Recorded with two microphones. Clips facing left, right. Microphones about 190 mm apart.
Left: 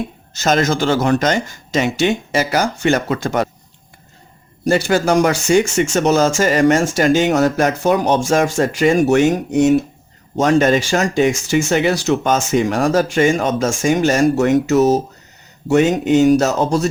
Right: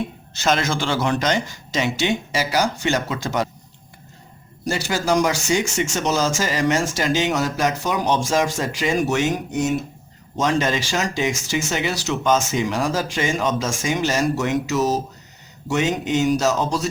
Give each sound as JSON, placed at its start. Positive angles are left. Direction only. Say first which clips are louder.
{"t": 0.3, "sound": "speech", "louder": "left 5 dB", "side_deg": 45}
{"t": 4.6, "sound": "speech", "louder": "left 8 dB", "side_deg": 55}